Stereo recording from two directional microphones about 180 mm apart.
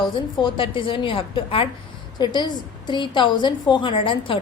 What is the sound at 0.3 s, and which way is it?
A woman's voice, 30° left (ahead or behind).